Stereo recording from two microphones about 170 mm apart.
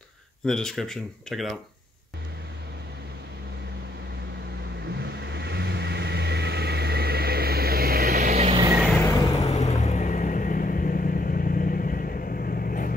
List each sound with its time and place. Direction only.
0.5 s speech: 5° left (ahead or behind)
4.8 s vehicle: 85° right; by 8.4 s 60° right (ahead or behind)
8.4 s vehicle: 30° right (ahead or behind)
9.0 s vehicle: 20° left (ahead or behind)
9.4 s vehicle: 40° left (ahead or behind); by 12.9 s 55° left (ahead or behind)